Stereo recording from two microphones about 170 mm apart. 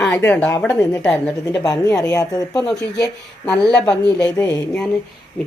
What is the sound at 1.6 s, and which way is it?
Speech, 20° left (ahead or behind).